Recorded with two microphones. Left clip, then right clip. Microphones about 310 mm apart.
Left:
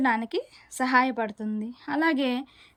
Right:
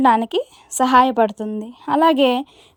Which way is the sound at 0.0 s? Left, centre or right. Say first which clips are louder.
Right 10 dB; centre.